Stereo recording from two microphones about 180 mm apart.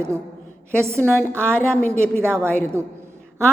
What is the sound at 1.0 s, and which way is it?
Speech, 10° left (ahead or behind).